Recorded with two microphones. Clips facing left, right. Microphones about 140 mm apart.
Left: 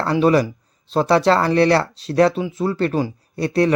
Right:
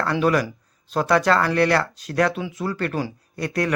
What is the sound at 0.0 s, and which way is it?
Speech, 25° left (ahead or behind).